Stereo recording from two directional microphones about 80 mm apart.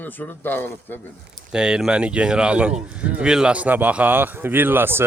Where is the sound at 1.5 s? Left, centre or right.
Centre.